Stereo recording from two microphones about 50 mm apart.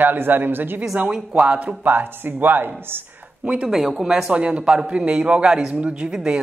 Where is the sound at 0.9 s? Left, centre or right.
Centre.